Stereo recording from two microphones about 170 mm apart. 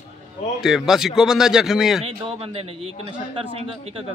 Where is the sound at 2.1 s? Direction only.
30° right (ahead or behind).